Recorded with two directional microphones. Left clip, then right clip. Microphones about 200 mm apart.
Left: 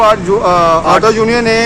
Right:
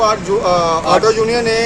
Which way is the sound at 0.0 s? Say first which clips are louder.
Left 5 dB; 35° left (ahead or behind).